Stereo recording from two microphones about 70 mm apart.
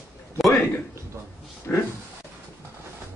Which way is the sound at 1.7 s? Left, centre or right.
Left.